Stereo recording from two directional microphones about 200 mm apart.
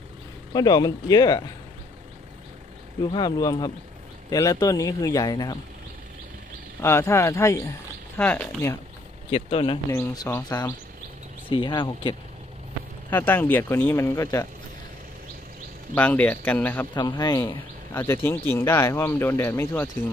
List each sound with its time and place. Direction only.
0.5 s speech: 20° left (ahead or behind)
3.1 s speech: 20° left (ahead or behind)
6.8 s speech: 15° left (ahead or behind)
9.3 s speech: 25° left (ahead or behind)
9.8 s speech: 15° left (ahead or behind)
11.4 s speech: 25° left (ahead or behind)
13.1 s speech: 10° left (ahead or behind)
15.9 s speech: 10° left (ahead or behind)
16.9 s speech: 20° left (ahead or behind)